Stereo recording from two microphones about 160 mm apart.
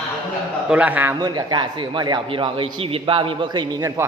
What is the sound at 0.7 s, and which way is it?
Speech, 10° right (ahead or behind).